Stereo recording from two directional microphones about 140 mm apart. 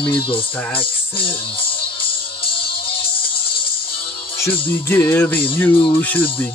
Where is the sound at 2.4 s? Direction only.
40° left (ahead or behind).